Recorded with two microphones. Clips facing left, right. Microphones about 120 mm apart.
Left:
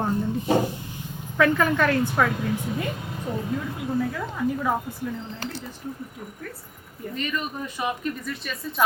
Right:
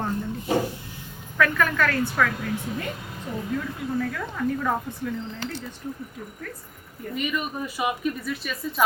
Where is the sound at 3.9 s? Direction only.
15° left (ahead or behind).